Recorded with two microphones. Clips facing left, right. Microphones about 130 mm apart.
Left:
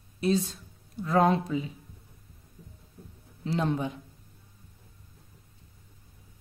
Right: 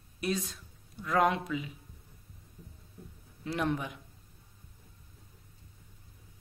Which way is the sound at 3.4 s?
25° left (ahead or behind).